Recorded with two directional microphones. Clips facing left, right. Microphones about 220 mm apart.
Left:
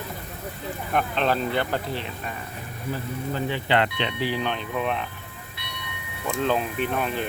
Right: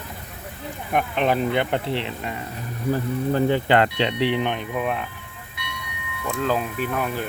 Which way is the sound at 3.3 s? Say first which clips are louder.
Right 5 dB; 45° right (ahead or behind).